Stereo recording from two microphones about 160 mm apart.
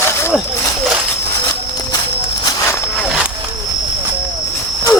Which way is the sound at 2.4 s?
20° left (ahead or behind).